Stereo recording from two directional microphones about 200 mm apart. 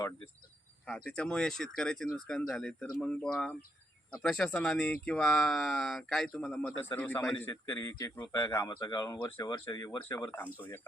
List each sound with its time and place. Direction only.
0.9 s a man's voice: 5° left (ahead or behind)